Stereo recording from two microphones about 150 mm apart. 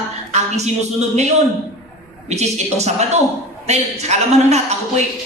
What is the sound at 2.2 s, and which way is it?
Speech, 45° right (ahead or behind).